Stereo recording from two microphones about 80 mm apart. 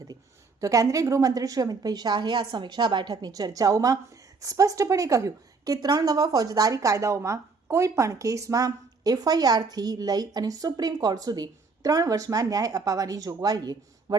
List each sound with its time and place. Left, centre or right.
0.6 s a woman's voice: right